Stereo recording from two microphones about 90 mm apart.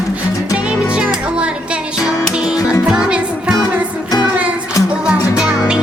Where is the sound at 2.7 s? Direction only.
10° right (ahead or behind).